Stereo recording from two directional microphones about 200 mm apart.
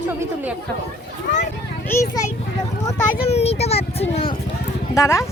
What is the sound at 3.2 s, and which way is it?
A child's voice, 30° left (ahead or behind).